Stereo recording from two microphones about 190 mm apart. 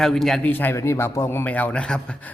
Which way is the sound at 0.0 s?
Centre (ahead or behind).